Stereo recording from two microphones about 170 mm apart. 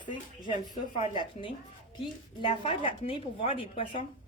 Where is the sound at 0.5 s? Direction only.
30° left (ahead or behind).